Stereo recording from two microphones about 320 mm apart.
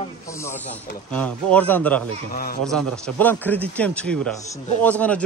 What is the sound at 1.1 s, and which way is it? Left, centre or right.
A man's voice, centre.